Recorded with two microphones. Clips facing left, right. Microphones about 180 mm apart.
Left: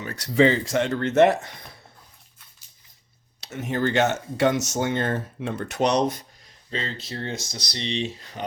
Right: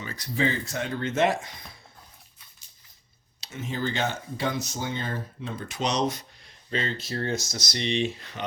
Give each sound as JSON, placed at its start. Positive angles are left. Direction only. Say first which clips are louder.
{"t": 0.0, "sound": "speech", "louder": "left 8 dB", "side_deg": 70}
{"t": 3.4, "sound": "speech", "louder": "left 6 dB", "side_deg": 65}
{"t": 6.7, "sound": "speech", "louder": "right 1 dB", "side_deg": 30}